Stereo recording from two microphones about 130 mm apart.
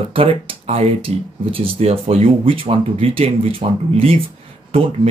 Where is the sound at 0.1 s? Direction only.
45° right (ahead or behind).